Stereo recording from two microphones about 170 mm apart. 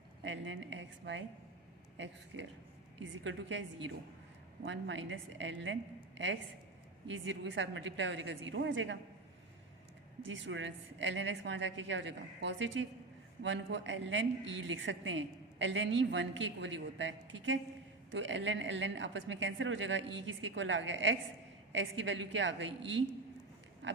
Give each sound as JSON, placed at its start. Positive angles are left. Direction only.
{"t": 0.3, "sound": "a woman's voice", "side_deg": -90}
{"t": 7.4, "sound": "a woman's voice", "side_deg": -90}
{"t": 10.2, "sound": "a woman's voice", "side_deg": -90}